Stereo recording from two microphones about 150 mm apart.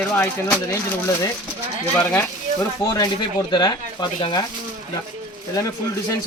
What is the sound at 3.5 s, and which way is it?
Speech, 30° left (ahead or behind).